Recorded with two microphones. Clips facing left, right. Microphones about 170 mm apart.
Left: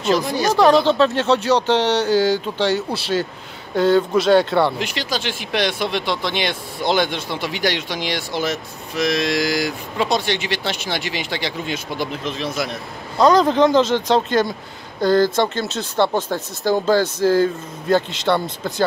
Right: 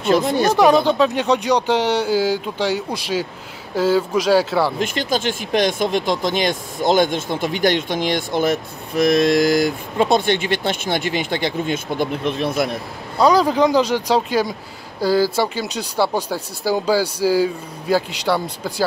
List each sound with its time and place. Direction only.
0.1 s speech: 55° right (ahead or behind)
0.7 s speech: 5° right (ahead or behind)
4.7 s speech: 50° right (ahead or behind)
13.2 s speech: 5° right (ahead or behind)